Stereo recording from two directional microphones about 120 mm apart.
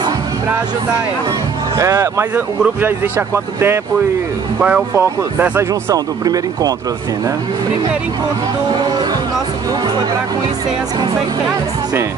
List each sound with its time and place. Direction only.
1.8 s speech: 25° right (ahead or behind)
2.3 s speech: 15° right (ahead or behind)
4.6 s speech: 10° right (ahead or behind)
4.9 s speech: 20° right (ahead or behind)